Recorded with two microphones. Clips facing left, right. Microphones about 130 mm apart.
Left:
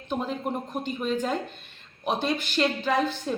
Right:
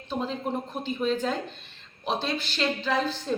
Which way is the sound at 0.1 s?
10° left (ahead or behind).